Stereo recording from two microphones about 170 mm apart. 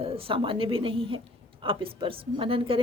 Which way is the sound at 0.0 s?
35° right (ahead or behind).